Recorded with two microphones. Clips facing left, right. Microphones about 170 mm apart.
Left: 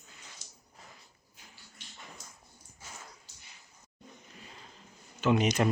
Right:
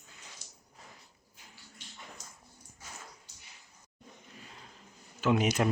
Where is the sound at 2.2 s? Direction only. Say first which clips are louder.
Even; 40° right (ahead or behind).